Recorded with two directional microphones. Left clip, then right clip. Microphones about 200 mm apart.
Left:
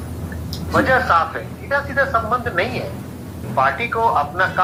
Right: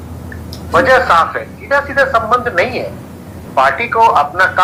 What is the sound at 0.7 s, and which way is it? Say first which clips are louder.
A man's voice: right 6 dB; 45° right (ahead or behind).